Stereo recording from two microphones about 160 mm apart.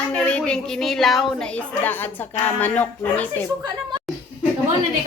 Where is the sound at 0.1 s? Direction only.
5° left (ahead or behind).